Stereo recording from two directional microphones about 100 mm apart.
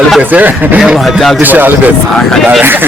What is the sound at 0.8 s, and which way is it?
Speech, centre (ahead or behind).